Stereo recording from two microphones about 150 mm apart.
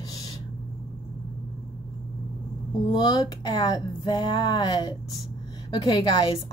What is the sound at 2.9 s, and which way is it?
Speech, 25° left (ahead or behind).